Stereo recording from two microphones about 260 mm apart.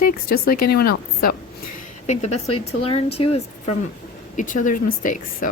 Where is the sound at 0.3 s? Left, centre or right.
Left.